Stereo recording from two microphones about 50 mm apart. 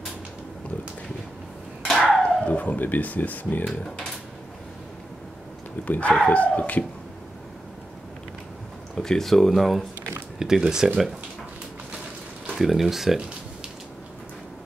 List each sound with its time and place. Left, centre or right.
1.9 s a sound: centre
2.2 s a sound: left
3.6 s speech: centre
5.9 s speech: left
8.9 s speech: centre
10.4 s speech: centre
12.5 s speech: centre